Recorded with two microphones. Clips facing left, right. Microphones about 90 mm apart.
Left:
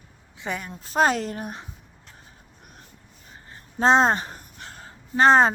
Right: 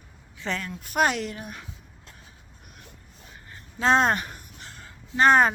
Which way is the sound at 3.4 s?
30° left (ahead or behind).